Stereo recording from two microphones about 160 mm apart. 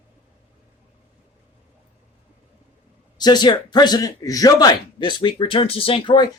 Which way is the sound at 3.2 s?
25° left (ahead or behind).